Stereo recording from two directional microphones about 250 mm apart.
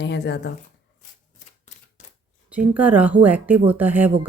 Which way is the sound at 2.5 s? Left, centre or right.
Centre.